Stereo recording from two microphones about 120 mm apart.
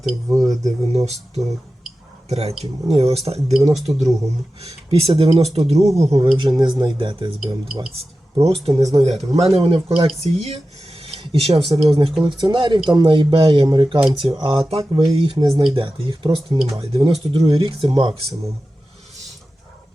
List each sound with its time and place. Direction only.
0.3 s speech: 30° right (ahead or behind)
0.5 s speech: 70° right (ahead or behind)
3.8 s speech: centre (ahead or behind)
4.6 s speech: 55° right (ahead or behind)
6.3 s speech: 40° right (ahead or behind)
8.6 s speech: 60° right (ahead or behind)
12.4 s speech: 40° right (ahead or behind)
16.9 s speech: 50° right (ahead or behind)